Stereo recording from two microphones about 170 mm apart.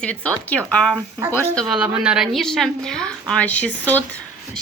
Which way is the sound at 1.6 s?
5° right (ahead or behind).